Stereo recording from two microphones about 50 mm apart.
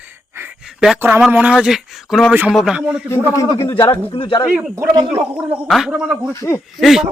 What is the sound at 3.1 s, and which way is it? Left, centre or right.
Speech, left.